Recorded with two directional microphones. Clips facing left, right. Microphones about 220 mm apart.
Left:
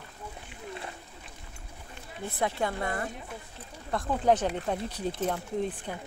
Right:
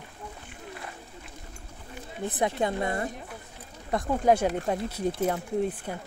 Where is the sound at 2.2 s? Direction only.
20° right (ahead or behind).